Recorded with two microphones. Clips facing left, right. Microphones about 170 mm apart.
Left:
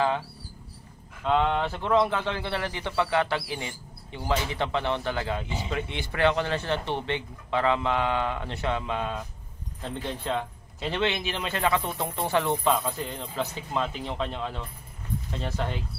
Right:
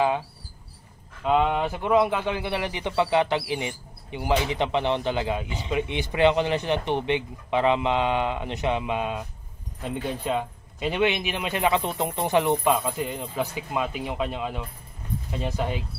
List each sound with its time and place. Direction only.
1.2 s speech: 10° right (ahead or behind)